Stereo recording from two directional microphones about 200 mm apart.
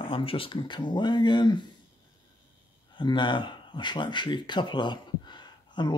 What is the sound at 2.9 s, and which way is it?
Speech, 25° left (ahead or behind).